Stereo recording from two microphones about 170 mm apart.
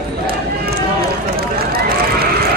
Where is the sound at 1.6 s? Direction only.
65° right (ahead or behind).